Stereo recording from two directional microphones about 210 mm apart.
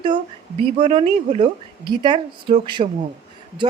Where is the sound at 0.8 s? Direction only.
25° right (ahead or behind).